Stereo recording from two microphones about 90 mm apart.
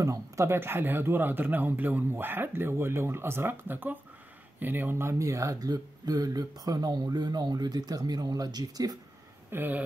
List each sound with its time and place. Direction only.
0.0 s speech: 35° right (ahead or behind)
9.5 s speech: 20° right (ahead or behind)